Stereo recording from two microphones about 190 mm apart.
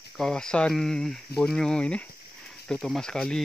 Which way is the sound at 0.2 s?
5° left (ahead or behind).